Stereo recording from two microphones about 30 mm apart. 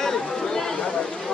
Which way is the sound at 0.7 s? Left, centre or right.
Left.